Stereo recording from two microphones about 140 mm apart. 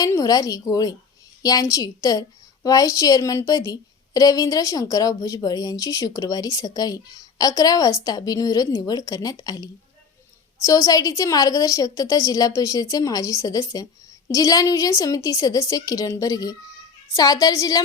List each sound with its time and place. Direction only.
0.0 s a woman's voice: 25° left (ahead or behind)
10.7 s a woman's voice: 25° left (ahead or behind)